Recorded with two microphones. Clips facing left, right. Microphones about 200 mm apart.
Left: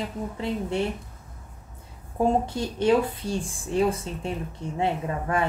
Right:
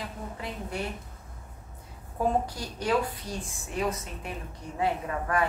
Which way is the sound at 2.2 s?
25° left (ahead or behind).